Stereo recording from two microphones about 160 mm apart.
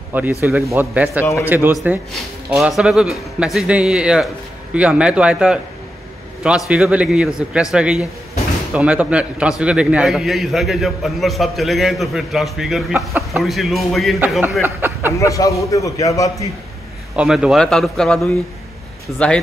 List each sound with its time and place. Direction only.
0.1 s speech: 10° right (ahead or behind)
1.2 s speech: 15° left (ahead or behind)
1.8 s a man's voice: 10° right (ahead or behind)
14.6 s speech: 10° right (ahead or behind)
15.1 s a man's voice: 20° left (ahead or behind)
17.1 s a man's voice: 5° right (ahead or behind)